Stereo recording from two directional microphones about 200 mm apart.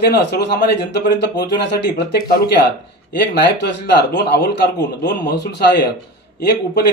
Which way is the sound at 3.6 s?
55° left (ahead or behind).